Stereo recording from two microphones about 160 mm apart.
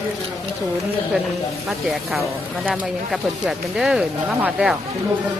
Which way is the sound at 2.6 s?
Centre (ahead or behind).